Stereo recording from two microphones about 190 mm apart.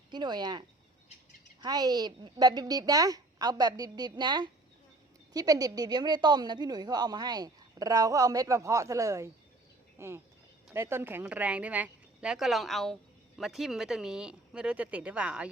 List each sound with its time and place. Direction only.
0.1 s speech: 25° right (ahead or behind)
1.6 s a woman's voice: 20° right (ahead or behind)